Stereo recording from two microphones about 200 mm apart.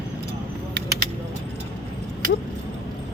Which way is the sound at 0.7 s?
55° right (ahead or behind).